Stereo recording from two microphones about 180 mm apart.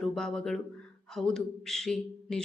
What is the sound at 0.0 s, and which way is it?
A man's voice, centre (ahead or behind).